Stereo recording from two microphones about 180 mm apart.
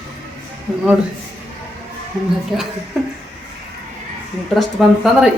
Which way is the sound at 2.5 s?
Centre (ahead or behind).